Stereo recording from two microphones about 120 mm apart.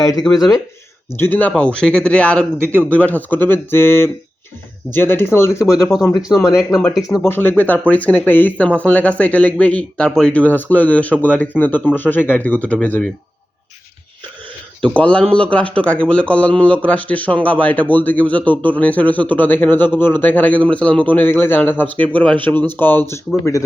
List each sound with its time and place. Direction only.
0.0 s speech: 30° left (ahead or behind)
1.2 s speech: 15° left (ahead or behind)
6.1 s speech: 5° right (ahead or behind)
7.3 s speech: 15° left (ahead or behind)
14.8 s speech: 10° left (ahead or behind)